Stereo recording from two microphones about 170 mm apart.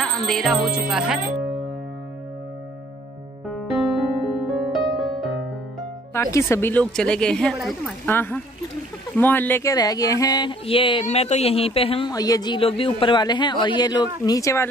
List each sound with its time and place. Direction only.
0.0 s speech: 5° left (ahead or behind)
4.3 s music: centre (ahead or behind)
6.3 s a woman's voice: 15° left (ahead or behind); by 12.1 s 35° left (ahead or behind)
12.1 s speech: 20° left (ahead or behind)